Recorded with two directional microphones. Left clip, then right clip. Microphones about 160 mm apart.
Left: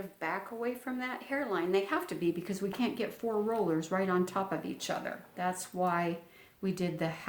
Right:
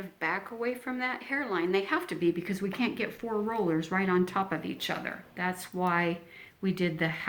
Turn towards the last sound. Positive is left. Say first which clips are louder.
# right 4 dB
turn(degrees=25)  # may be behind; listen again after turning